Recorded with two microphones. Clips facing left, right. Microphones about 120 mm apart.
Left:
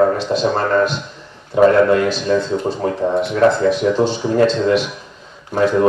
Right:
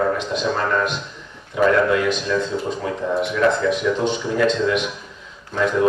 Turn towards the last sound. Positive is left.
turn(degrees=40)  # may be behind; listen again after turning